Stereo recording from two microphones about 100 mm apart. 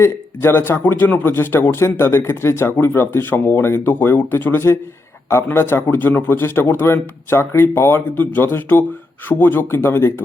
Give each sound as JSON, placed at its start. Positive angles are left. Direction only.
{"t": 0.0, "sound": "speech", "side_deg": 20}